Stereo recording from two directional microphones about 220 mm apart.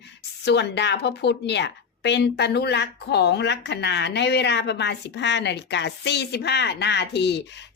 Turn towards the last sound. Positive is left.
turn(degrees=50)  # may be behind; listen again after turning